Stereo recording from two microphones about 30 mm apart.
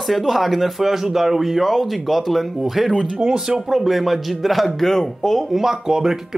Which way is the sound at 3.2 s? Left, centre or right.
Right.